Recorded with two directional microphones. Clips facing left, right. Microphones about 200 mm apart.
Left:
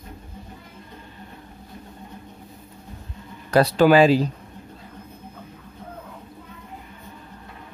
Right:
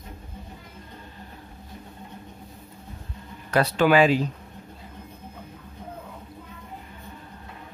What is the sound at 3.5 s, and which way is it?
Speech, 35° left (ahead or behind).